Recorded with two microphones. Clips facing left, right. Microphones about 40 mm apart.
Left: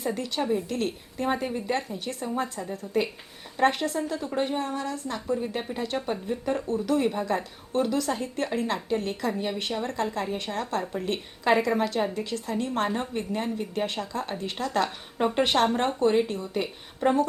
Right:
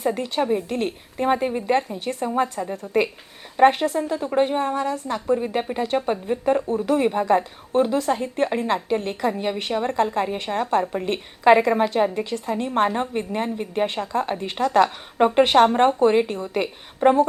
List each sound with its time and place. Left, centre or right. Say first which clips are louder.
0.0 s a woman's voice: right 6 dB; right